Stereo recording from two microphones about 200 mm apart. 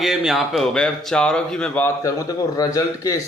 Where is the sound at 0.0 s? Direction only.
Centre (ahead or behind).